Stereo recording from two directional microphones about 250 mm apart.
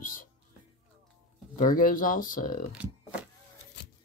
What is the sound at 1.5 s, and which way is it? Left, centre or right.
Speech, left.